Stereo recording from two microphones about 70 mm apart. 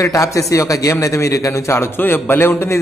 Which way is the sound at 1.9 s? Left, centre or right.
Left.